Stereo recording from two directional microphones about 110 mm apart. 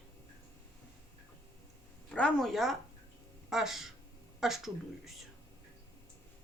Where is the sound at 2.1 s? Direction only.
5° left (ahead or behind).